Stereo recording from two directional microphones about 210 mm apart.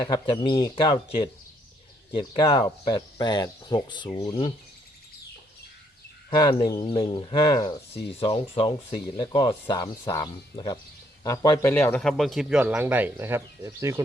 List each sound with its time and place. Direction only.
0.0 s speech: 20° left (ahead or behind)
6.3 s a man's voice: 20° left (ahead or behind); by 14.0 s 15° right (ahead or behind)